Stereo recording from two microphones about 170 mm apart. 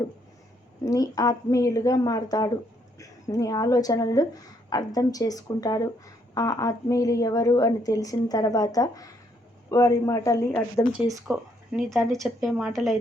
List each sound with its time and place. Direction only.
0.9 s a woman's voice: 20° left (ahead or behind)
11.8 s speech: centre (ahead or behind)